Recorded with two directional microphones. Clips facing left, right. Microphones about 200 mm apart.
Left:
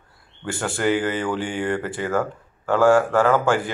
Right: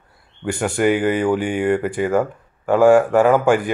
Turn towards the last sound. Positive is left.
turn(degrees=-15)  # may be behind; listen again after turning